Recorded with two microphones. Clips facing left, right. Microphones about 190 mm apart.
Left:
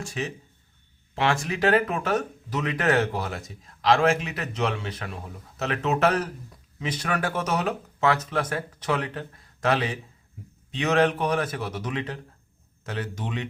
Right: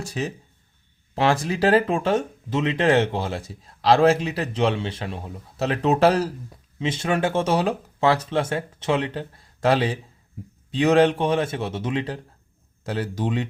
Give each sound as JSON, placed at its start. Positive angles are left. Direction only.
{"t": 0.0, "sound": "speech", "side_deg": -35}